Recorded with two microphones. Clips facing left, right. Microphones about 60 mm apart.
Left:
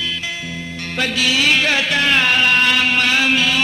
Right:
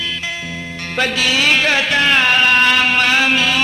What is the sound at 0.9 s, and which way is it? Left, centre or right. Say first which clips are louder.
Music: right 2 dB; right.